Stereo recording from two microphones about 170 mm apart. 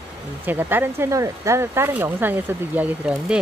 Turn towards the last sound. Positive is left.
turn(degrees=-5)  # may be behind; listen again after turning